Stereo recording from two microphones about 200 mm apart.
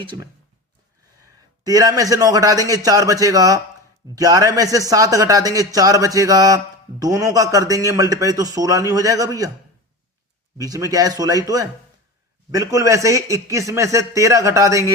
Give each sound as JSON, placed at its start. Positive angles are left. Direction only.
{"t": 0.0, "sound": "speech", "side_deg": -25}
{"t": 1.6, "sound": "speech", "side_deg": -20}
{"t": 10.6, "sound": "speech", "side_deg": -15}